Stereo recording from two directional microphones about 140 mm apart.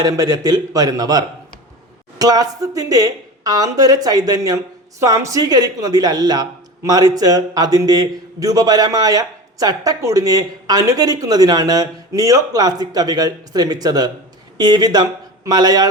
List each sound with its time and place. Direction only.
0.0 s a woman's voice: 25° right (ahead or behind)